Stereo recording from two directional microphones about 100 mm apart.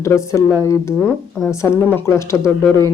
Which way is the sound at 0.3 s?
30° left (ahead or behind).